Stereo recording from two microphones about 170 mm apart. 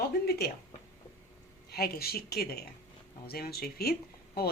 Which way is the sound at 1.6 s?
65° left (ahead or behind).